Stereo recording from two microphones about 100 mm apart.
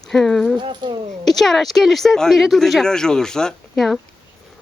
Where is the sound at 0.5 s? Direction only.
50° right (ahead or behind).